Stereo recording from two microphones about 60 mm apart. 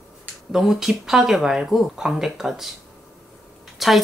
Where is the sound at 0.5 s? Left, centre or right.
Centre.